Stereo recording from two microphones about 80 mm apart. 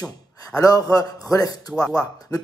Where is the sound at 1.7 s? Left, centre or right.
Centre.